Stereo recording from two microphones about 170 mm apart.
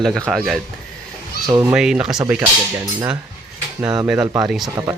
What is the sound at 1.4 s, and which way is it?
Speech, 20° right (ahead or behind).